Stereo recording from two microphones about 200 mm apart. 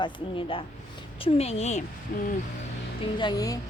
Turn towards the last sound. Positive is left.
turn(degrees=20)  # may be behind; listen again after turning